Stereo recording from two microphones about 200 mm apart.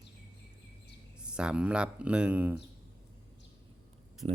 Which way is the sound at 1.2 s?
5° right (ahead or behind).